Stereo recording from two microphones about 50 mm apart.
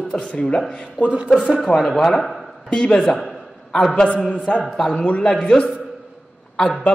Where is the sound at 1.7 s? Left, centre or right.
Centre.